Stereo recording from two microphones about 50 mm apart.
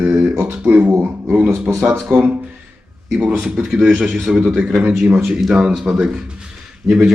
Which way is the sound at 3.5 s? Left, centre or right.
Centre.